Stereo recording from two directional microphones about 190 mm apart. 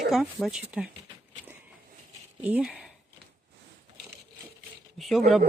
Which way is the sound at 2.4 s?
5° right (ahead or behind).